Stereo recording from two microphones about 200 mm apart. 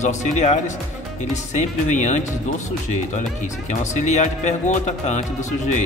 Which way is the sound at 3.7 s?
35° left (ahead or behind).